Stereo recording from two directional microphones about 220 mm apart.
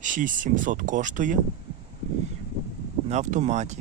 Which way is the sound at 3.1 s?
30° right (ahead or behind).